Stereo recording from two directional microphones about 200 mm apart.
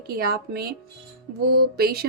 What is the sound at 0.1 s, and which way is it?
Speech, 50° right (ahead or behind).